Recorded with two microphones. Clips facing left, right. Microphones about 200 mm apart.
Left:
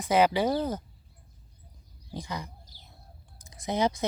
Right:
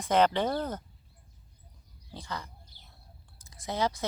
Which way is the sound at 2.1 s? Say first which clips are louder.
Left 3 dB; 15° left (ahead or behind).